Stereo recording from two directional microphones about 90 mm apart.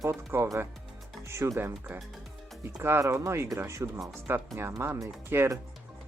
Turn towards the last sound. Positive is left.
turn(degrees=-30)  # may be behind; listen again after turning